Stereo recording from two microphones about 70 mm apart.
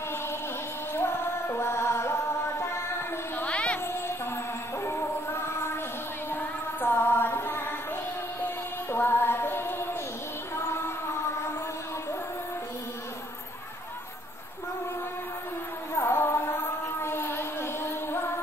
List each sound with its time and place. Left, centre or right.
0.9 s music: left
3.4 s music: centre
4.8 s music: left
8.9 s music: left
16.0 s a sound: left